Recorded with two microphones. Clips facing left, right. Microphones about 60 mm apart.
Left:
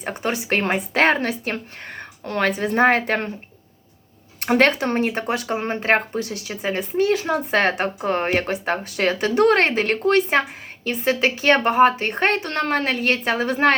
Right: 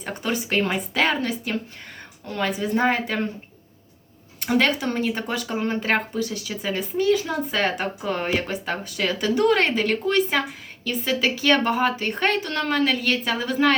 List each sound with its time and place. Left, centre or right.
0.0 s a woman's voice: left
4.4 s a woman's voice: left